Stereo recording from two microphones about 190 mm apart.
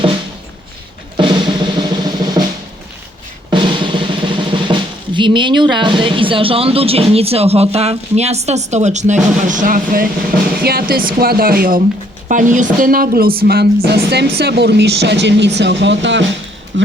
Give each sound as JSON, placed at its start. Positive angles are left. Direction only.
{"t": 1.1, "sound": "drum", "side_deg": -25}
{"t": 3.5, "sound": "drum", "side_deg": -25}
{"t": 10.6, "sound": "speech", "side_deg": -55}